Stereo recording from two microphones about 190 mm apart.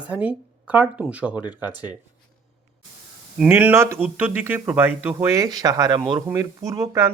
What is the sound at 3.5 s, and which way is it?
Speech, 10° right (ahead or behind).